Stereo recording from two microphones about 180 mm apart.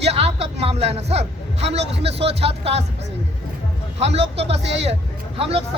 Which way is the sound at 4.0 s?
35° right (ahead or behind).